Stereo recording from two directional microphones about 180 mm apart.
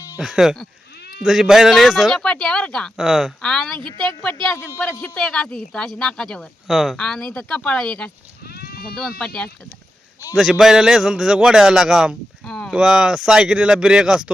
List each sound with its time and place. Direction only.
0.2 s a man's voice: centre (ahead or behind)
3.8 s speech: 25° right (ahead or behind)
4.0 s a man's voice: 5° left (ahead or behind)
8.5 s sheep: 55° left (ahead or behind)
9.0 s a man's voice: 5° left (ahead or behind)